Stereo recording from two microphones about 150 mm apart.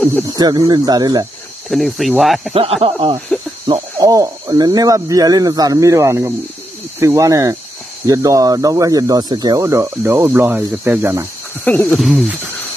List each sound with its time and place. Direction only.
0.4 s speech: 25° right (ahead or behind)
1.7 s speech: centre (ahead or behind)
2.5 s speech: 40° right (ahead or behind); by 11.2 s 15° right (ahead or behind)
11.6 s speech: 15° left (ahead or behind)
12.0 s speech: centre (ahead or behind)